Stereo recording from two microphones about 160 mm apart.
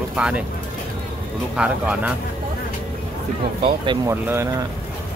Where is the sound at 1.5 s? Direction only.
5° right (ahead or behind).